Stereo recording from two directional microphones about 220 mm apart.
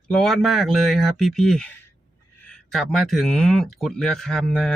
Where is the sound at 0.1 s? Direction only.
Centre (ahead or behind).